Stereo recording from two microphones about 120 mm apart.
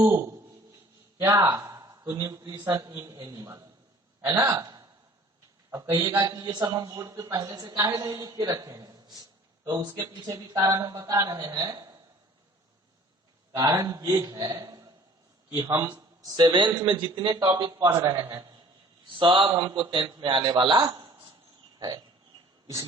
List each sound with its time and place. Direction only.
0.0 s a man's voice: 20° right (ahead or behind)
10.2 s a woman's voice: 30° right (ahead or behind)
13.5 s a man's voice: 25° right (ahead or behind)
16.3 s a man's voice: 40° right (ahead or behind)
17.7 s a woman's voice: 25° right (ahead or behind)
19.2 s a man's voice: 40° right (ahead or behind)
21.8 s a sound: 35° right (ahead or behind)
22.6 s speech: 25° right (ahead or behind)